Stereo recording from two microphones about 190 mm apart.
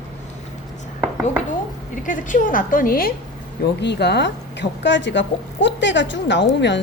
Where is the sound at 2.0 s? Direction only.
45° left (ahead or behind).